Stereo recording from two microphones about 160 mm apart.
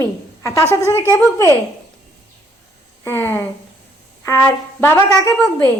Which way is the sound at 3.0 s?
15° left (ahead or behind).